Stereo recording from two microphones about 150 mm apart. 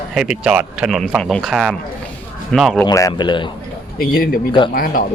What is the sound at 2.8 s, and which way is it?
Speech, 25° left (ahead or behind).